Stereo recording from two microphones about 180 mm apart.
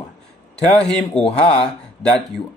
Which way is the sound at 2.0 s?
5° left (ahead or behind).